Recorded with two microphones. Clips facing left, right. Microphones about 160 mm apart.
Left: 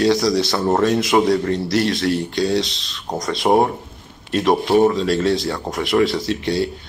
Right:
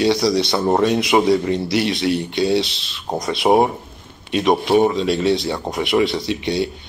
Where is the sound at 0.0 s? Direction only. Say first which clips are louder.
Even; centre (ahead or behind).